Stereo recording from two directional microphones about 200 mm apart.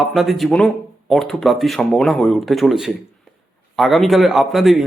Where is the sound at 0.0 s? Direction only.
Centre (ahead or behind).